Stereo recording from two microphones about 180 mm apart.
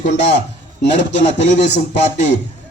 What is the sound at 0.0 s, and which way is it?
Speech, 40° left (ahead or behind).